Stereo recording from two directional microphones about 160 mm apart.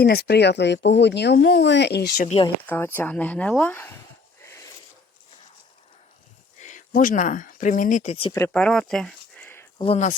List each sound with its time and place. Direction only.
0.0 s speech: 80° left
2.6 s speech: 15° left (ahead or behind)
4.4 s a sound: 20° left (ahead or behind)
6.6 s speech: 50° left (ahead or behind)
8.5 s a sound: 5° left (ahead or behind)
9.7 s speech: 30° left (ahead or behind)